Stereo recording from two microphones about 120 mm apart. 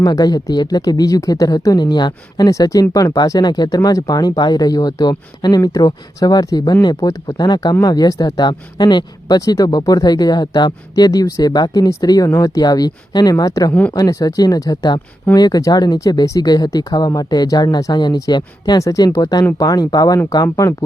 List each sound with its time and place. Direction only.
0.0 s speech: 35° left (ahead or behind)